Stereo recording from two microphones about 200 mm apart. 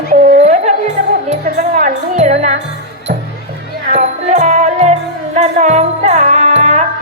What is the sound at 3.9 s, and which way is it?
Music, 35° right (ahead or behind).